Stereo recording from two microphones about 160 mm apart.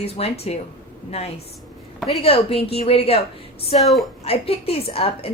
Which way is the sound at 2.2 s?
35° left (ahead or behind).